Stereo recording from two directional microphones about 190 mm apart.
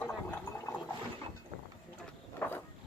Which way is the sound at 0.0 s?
5° left (ahead or behind).